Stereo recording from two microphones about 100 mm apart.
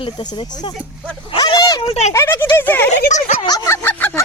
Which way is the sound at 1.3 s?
55° left (ahead or behind).